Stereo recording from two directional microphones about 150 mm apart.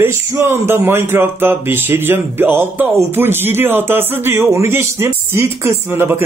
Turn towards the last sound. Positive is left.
turn(degrees=-15)  # may be behind; listen again after turning